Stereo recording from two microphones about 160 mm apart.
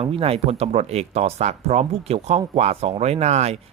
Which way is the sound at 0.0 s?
35° right (ahead or behind).